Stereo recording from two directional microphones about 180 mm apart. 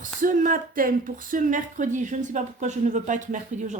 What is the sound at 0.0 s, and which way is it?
Speech, 45° right (ahead or behind).